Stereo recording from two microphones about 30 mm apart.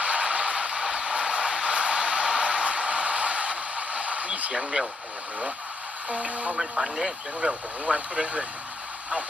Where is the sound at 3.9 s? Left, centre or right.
Right.